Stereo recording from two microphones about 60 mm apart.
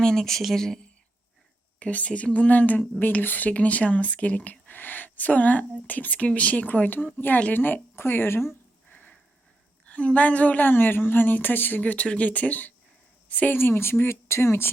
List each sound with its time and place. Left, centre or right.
0.0 s speech: centre
1.8 s a woman's voice: left
8.9 s a sound: left
9.8 s speech: left
13.6 s a woman's voice: left